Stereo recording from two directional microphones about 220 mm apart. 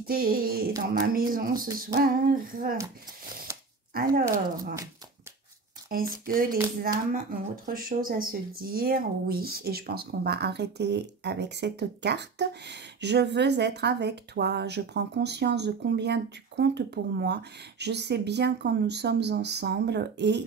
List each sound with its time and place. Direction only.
0.0 s female singing: 40° right (ahead or behind)
3.5 s a sound: 15° right (ahead or behind)
3.9 s female singing: 40° right (ahead or behind)
5.9 s female singing: 40° right (ahead or behind)
7.6 s speech: 40° right (ahead or behind)